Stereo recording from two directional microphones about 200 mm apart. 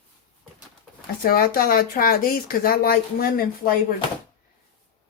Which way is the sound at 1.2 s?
45° left (ahead or behind).